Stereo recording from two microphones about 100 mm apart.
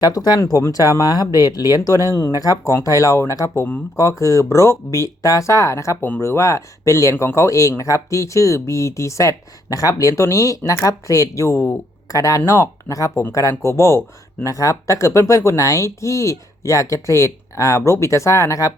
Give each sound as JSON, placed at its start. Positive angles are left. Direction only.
{"t": 0.0, "sound": "speech", "side_deg": 40}